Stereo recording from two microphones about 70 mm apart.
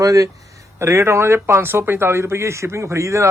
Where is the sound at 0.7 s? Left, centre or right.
Right.